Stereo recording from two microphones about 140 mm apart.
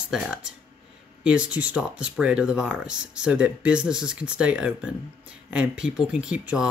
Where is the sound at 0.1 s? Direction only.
5° right (ahead or behind).